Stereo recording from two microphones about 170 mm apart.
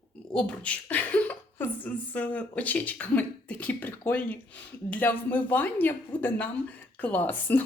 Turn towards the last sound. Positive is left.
turn(degrees=10)  # may be behind; listen again after turning